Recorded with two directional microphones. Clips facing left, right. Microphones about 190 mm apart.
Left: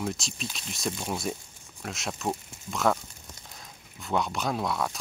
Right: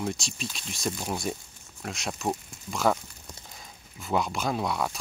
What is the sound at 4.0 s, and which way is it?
Speech, 5° right (ahead or behind).